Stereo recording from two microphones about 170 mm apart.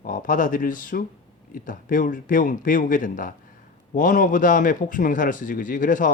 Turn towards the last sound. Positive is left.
turn(degrees=50)  # may be behind; listen again after turning